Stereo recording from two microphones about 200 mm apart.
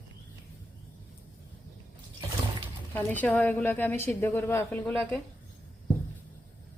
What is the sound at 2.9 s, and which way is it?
A woman's voice, 10° left (ahead or behind).